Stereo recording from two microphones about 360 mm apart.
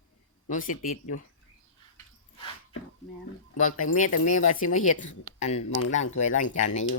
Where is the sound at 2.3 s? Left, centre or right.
Centre.